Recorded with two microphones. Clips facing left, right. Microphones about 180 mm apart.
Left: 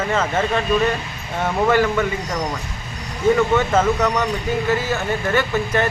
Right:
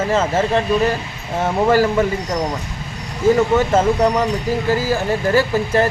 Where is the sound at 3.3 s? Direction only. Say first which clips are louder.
Right 2 dB; 30° right (ahead or behind).